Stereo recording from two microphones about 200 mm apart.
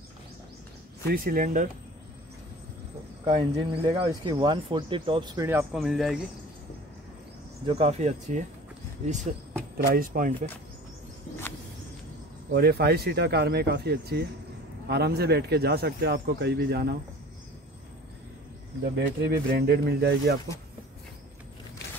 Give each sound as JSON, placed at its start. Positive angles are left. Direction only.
{"t": 1.0, "sound": "speech", "side_deg": -45}
{"t": 3.3, "sound": "speech", "side_deg": -20}
{"t": 5.5, "sound": "speech", "side_deg": -10}
{"t": 7.6, "sound": "speech", "side_deg": -30}
{"t": 12.5, "sound": "speech", "side_deg": -55}
{"t": 18.9, "sound": "speech", "side_deg": -55}